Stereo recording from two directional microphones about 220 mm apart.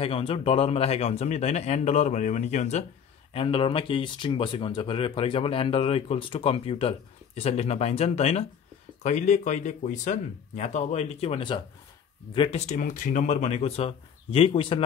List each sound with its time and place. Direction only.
0.0 s speech: 25° left (ahead or behind)